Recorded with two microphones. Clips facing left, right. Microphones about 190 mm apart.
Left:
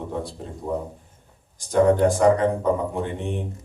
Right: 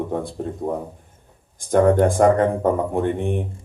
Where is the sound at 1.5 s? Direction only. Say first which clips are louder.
Right 2 dB; 55° right (ahead or behind).